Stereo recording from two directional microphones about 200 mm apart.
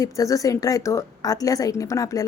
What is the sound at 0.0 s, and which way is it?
A woman's voice, 15° left (ahead or behind).